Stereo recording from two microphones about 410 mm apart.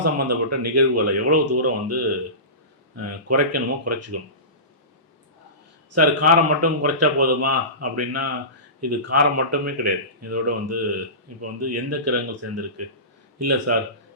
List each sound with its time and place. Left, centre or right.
0.0 s speech: right
5.9 s speech: right